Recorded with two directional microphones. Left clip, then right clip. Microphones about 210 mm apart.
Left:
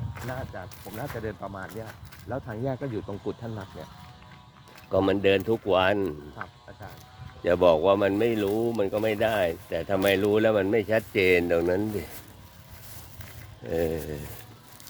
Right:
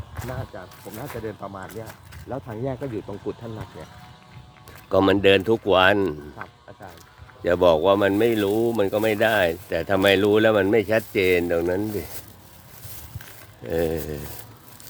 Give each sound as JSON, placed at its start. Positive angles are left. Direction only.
{"t": 0.5, "sound": "speech", "side_deg": 30}
{"t": 4.9, "sound": "speech", "side_deg": -15}
{"t": 7.4, "sound": "speech", "side_deg": -5}
{"t": 13.7, "sound": "speech", "side_deg": -5}